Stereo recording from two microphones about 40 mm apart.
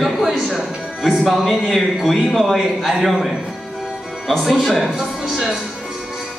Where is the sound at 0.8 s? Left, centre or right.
Centre.